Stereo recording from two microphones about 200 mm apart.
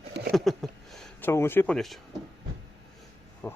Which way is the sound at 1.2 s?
10° left (ahead or behind).